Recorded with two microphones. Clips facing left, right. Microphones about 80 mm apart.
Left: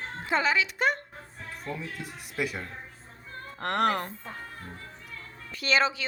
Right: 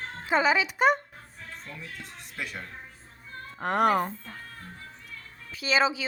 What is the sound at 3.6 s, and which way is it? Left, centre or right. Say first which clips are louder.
Speech: right 3 dB; centre.